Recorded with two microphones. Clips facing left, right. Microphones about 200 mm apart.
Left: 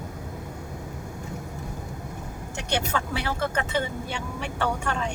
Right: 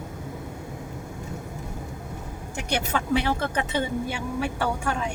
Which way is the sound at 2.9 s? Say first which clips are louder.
Right 5 dB; 15° right (ahead or behind).